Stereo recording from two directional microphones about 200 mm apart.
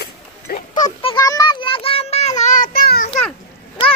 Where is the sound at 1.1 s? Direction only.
20° left (ahead or behind); by 3.1 s 45° left (ahead or behind).